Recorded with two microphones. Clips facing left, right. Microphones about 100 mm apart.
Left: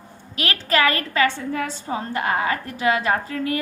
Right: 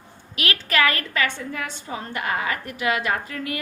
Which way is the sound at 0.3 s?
30° left (ahead or behind).